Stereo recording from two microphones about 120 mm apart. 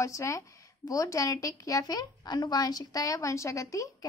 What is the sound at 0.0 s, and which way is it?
A woman's voice, 25° left (ahead or behind).